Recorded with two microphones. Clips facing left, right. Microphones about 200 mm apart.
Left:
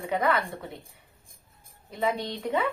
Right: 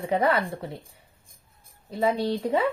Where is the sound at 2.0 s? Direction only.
30° right (ahead or behind).